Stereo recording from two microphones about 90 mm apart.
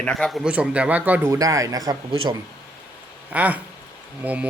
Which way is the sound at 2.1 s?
70° right (ahead or behind).